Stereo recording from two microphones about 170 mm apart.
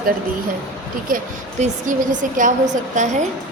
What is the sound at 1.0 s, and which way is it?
Speech, 50° right (ahead or behind).